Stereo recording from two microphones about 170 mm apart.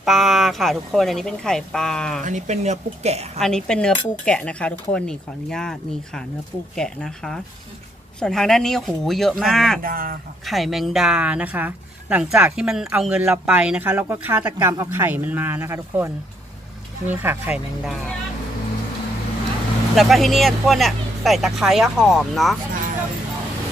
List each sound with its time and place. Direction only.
0.0 s speech: centre (ahead or behind)
2.2 s speech: 45° right (ahead or behind)
3.3 s speech: 5° left (ahead or behind)
9.8 s speech: 55° right (ahead or behind)
10.4 s speech: centre (ahead or behind); by 16.1 s 15° right (ahead or behind)
17.1 s speech: 10° right (ahead or behind)
20.0 s speech: centre (ahead or behind)